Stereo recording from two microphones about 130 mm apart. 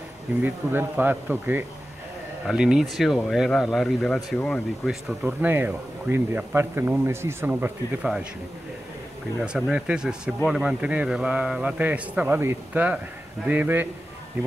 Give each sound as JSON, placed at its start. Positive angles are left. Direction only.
{"t": 0.4, "sound": "speech", "side_deg": -15}
{"t": 5.2, "sound": "speech", "side_deg": -15}
{"t": 9.4, "sound": "speech", "side_deg": -5}